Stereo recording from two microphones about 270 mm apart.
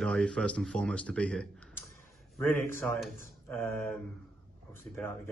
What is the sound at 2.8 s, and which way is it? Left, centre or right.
Speech, centre.